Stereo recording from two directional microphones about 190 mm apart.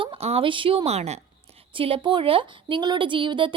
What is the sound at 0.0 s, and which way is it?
A woman's voice, 30° right (ahead or behind).